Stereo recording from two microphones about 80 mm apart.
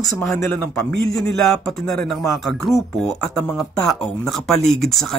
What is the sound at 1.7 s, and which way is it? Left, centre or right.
Speech, centre.